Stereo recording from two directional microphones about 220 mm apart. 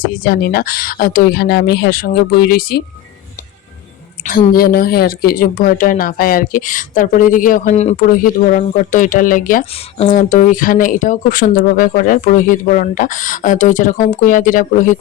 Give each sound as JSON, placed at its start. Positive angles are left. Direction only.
{"t": 0.0, "sound": "speech", "side_deg": 40}
{"t": 4.2, "sound": "a woman's voice", "side_deg": 40}